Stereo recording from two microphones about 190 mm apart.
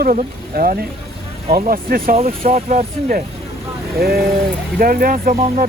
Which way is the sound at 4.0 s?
55° right (ahead or behind).